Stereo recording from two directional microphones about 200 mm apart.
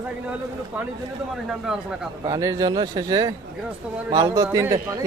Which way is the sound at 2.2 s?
15° right (ahead or behind).